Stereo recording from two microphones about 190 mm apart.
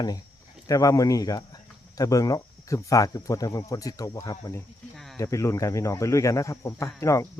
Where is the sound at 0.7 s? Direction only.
20° left (ahead or behind).